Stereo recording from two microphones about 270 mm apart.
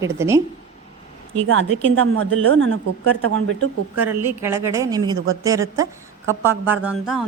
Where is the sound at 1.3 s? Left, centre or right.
Right.